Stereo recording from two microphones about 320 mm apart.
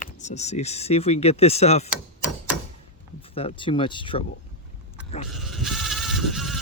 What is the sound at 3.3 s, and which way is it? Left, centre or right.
Speech, centre.